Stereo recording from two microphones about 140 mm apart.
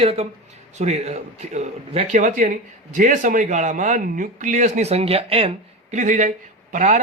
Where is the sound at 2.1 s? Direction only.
65° right (ahead or behind); by 5.5 s 45° right (ahead or behind).